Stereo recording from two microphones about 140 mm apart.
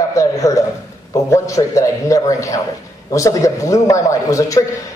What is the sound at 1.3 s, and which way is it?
A man's voice, 20° left (ahead or behind).